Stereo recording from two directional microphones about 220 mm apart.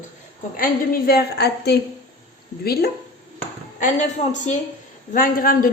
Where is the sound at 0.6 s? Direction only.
45° left (ahead or behind).